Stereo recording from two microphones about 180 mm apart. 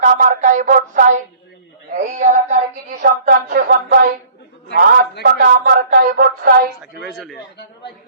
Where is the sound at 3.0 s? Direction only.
50° right (ahead or behind).